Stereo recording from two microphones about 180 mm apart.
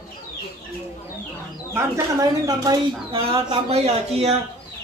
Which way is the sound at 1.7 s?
15° right (ahead or behind).